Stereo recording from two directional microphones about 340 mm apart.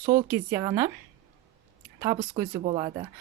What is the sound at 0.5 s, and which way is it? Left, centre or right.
Speech, centre.